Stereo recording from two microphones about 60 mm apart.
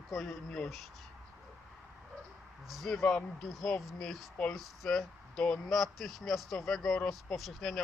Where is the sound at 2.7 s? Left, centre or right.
Centre.